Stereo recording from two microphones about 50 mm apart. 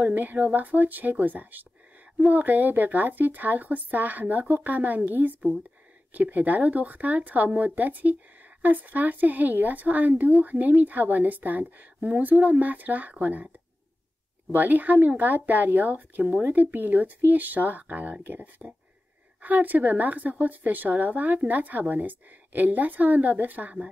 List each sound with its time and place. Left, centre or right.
0.0 s a woman's voice: right
14.5 s a woman's voice: right